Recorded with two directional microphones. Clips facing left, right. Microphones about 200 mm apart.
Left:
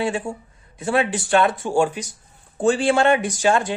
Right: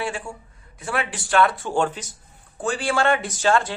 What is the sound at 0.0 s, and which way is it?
Speech, 25° left (ahead or behind).